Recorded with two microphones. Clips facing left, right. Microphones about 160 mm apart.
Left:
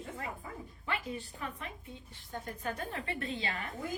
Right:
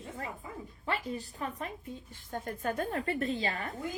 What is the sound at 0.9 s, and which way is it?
A woman's voice, 35° right (ahead or behind).